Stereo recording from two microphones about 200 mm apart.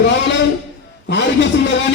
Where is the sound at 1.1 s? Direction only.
60° left (ahead or behind).